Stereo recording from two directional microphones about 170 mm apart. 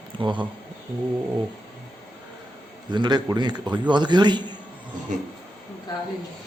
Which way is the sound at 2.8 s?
25° right (ahead or behind).